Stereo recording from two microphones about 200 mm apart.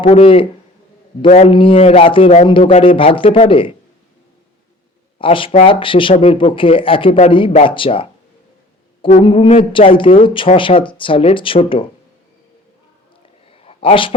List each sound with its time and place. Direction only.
0.0 s speech: 30° left (ahead or behind)
5.2 s speech: 25° left (ahead or behind)
13.5 s a sound: 30° left (ahead or behind)